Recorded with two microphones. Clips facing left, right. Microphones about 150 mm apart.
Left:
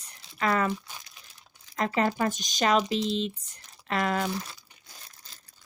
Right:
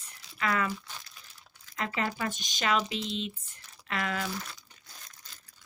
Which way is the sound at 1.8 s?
40° left (ahead or behind).